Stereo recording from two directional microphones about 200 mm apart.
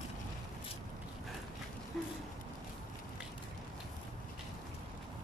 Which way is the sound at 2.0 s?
Centre (ahead or behind).